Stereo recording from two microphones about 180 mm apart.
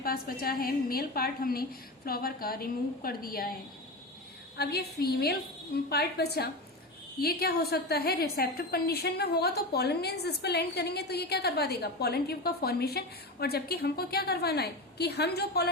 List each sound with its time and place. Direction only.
0.0 s a woman's voice: 55° left (ahead or behind)
4.5 s a woman's voice: 60° left (ahead or behind)